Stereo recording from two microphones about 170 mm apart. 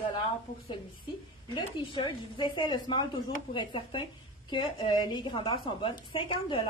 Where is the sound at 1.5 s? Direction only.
30° left (ahead or behind).